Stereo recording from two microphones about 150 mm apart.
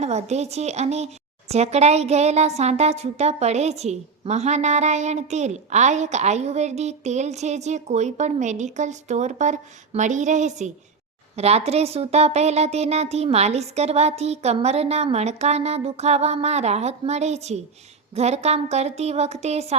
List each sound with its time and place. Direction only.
0.0 s speech: 45° right (ahead or behind)